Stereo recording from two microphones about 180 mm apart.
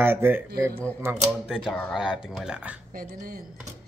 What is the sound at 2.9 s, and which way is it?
Speech, 50° right (ahead or behind).